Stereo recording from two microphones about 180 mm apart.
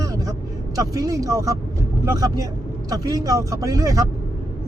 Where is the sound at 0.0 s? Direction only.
20° right (ahead or behind).